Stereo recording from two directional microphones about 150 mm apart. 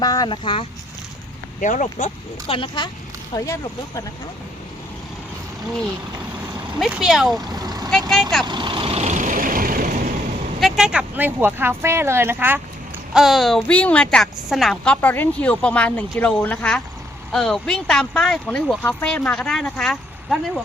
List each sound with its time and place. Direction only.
0.0 s speech: 25° left (ahead or behind)
1.6 s speech: 55° left (ahead or behind)
2.5 s speech: 35° left (ahead or behind)
3.3 s speech: 20° left (ahead or behind)
6.7 s speech: centre (ahead or behind)
7.3 s speech: 25° right (ahead or behind)
7.9 s speech: centre (ahead or behind)
8.4 s vehicle: 30° right (ahead or behind); by 10.1 s 60° right (ahead or behind)
10.6 s speech: 5° right (ahead or behind)
13.1 s a woman's voice: centre (ahead or behind)